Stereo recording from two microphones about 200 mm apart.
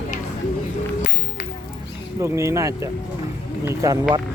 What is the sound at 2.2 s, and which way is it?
Speech, 15° right (ahead or behind).